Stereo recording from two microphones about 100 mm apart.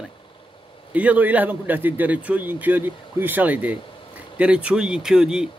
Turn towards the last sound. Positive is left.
turn(degrees=-5)  # may be behind; listen again after turning